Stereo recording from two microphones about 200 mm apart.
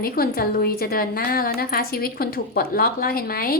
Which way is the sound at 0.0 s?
50° left (ahead or behind).